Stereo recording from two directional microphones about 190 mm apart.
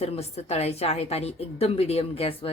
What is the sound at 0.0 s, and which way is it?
A woman's voice, 35° left (ahead or behind).